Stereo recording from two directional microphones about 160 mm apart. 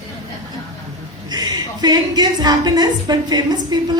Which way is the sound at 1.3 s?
25° right (ahead or behind).